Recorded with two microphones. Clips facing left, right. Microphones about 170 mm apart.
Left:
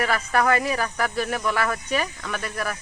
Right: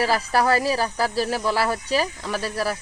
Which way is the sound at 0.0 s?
35° right (ahead or behind).